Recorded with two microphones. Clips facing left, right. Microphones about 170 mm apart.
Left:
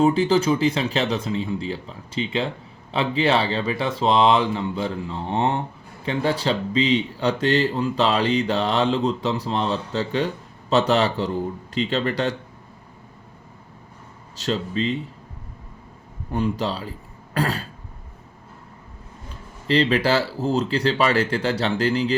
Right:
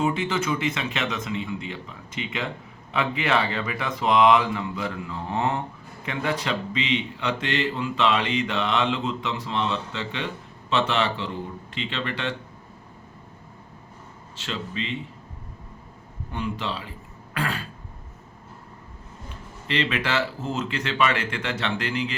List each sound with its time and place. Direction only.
0.0 s speech: 35° left (ahead or behind)
14.3 s speech: 40° left (ahead or behind)
16.3 s speech: 40° left (ahead or behind)
17.3 s throat clearing: 35° left (ahead or behind)
19.6 s speech: 35° left (ahead or behind)